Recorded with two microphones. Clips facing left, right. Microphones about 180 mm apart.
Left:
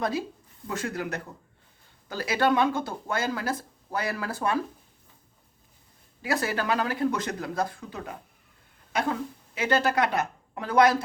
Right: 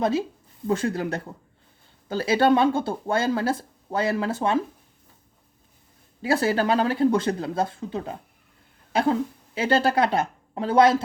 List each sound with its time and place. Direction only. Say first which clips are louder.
0.0 s speech: right 5 dB; 25° right (ahead or behind)
6.2 s speech: right 6 dB; 30° right (ahead or behind)